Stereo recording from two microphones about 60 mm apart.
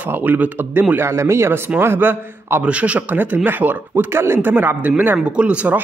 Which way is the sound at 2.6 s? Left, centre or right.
Right.